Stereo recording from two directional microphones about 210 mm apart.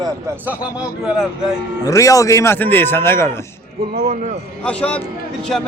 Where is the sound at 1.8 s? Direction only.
15° left (ahead or behind).